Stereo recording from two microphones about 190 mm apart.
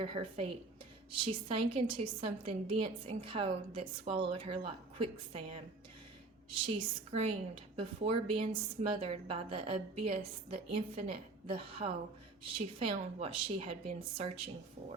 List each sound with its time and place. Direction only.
0.0 s a woman's voice: 30° right (ahead or behind)
6.5 s a woman's voice: 30° right (ahead or behind)